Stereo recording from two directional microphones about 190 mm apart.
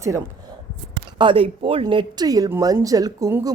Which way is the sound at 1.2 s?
25° right (ahead or behind).